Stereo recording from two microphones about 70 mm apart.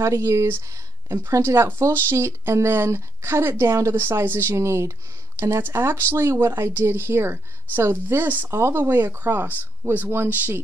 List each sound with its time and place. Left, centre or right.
0.0 s a woman's voice: right
8.5 s a woman's voice: right